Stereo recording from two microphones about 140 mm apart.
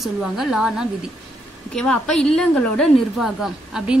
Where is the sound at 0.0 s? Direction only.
Centre (ahead or behind).